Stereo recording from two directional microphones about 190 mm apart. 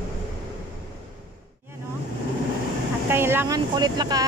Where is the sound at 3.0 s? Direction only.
10° right (ahead or behind).